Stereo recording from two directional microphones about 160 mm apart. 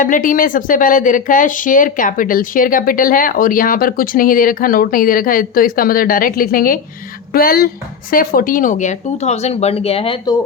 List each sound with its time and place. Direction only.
0.0 s speech: 55° left (ahead or behind); by 10.3 s 35° left (ahead or behind)